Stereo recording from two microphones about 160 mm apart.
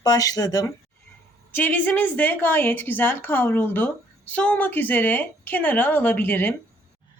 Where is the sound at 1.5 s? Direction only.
10° left (ahead or behind).